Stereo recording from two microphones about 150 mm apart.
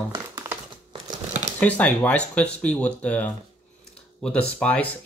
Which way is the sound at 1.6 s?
10° left (ahead or behind).